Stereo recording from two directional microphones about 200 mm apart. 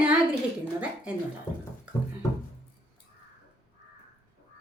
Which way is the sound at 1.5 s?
25° left (ahead or behind).